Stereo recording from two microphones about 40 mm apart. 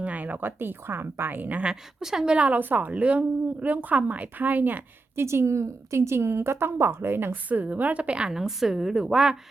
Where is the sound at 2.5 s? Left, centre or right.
Right.